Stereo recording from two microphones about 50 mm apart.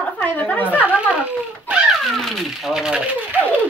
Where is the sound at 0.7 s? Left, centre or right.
Right.